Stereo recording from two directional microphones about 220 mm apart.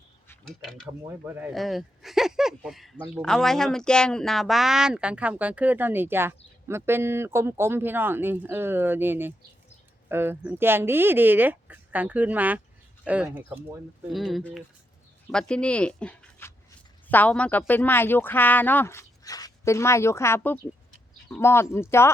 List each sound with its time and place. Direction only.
0.3 s speech: centre (ahead or behind)
0.9 s speech: 10° right (ahead or behind); by 22.1 s 10° left (ahead or behind)